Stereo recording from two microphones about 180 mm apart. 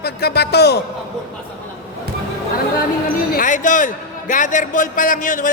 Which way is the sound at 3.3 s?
50° left (ahead or behind).